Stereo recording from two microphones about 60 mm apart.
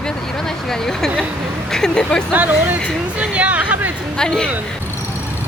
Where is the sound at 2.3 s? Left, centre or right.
Right.